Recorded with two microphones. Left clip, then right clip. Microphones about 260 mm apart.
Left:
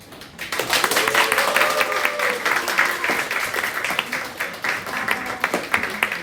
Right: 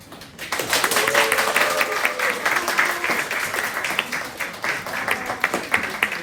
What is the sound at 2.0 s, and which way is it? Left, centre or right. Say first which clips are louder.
Applause: even; centre.